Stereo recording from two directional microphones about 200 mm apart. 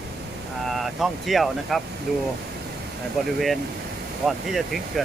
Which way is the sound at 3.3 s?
Centre (ahead or behind).